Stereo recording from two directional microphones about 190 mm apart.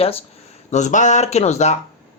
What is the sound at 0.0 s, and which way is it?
Speech, 30° left (ahead or behind).